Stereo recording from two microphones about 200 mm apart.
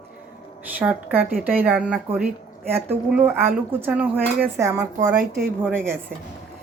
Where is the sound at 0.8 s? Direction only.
10° right (ahead or behind).